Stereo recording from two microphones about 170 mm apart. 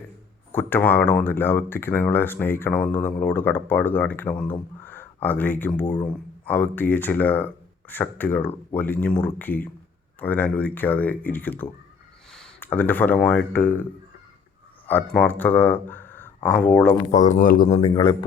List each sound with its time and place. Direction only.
0.5 s speech: 10° left (ahead or behind)
15.1 s speech: 10° left (ahead or behind)
17.1 s speech: 45° left (ahead or behind)
17.7 s a man's voice: 30° left (ahead or behind)